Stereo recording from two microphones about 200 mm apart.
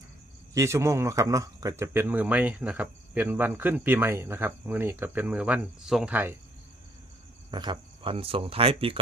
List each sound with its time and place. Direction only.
0.5 s speech: 15° right (ahead or behind)
7.5 s speech: 20° right (ahead or behind)